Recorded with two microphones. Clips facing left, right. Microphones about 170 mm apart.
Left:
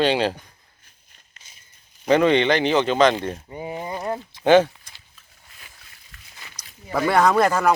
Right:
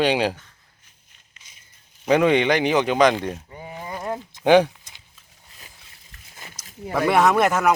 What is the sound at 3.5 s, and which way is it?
Speech, 20° left (ahead or behind).